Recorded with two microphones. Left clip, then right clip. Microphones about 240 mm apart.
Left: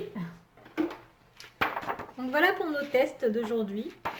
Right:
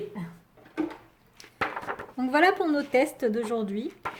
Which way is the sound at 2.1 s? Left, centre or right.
Right.